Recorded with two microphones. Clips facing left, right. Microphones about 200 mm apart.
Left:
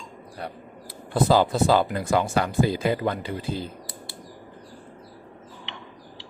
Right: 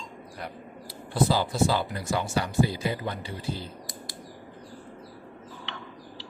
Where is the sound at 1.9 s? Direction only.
55° left (ahead or behind).